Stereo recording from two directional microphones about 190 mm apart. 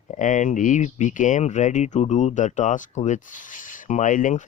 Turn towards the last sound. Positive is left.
turn(degrees=45)  # may be behind; listen again after turning